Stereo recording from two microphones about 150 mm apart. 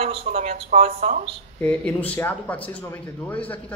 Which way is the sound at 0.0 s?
45° right (ahead or behind).